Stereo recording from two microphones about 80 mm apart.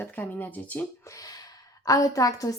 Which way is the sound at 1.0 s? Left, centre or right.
Left.